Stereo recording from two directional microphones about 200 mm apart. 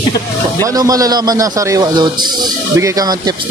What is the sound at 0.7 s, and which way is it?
A man's voice, 15° right (ahead or behind).